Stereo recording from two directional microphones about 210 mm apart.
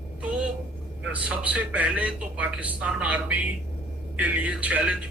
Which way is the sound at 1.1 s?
5° right (ahead or behind).